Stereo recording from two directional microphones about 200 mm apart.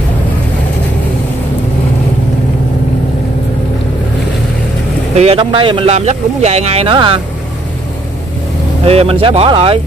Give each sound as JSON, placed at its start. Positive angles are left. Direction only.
{"t": 5.1, "sound": "a man's voice", "side_deg": -30}
{"t": 8.8, "sound": "a man's voice", "side_deg": -30}